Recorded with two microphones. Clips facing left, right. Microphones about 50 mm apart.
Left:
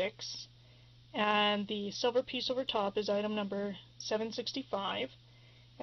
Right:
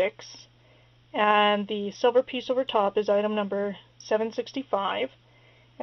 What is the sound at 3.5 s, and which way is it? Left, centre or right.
Speech, right.